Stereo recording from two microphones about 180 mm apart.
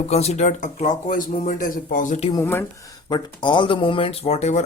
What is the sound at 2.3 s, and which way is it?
Speech, 15° left (ahead or behind).